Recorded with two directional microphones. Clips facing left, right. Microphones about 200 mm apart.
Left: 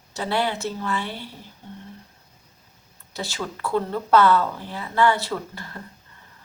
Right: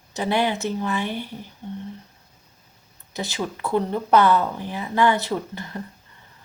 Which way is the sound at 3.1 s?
20° right (ahead or behind).